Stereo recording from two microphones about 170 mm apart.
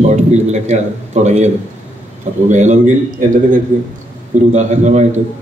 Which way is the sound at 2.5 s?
45° right (ahead or behind).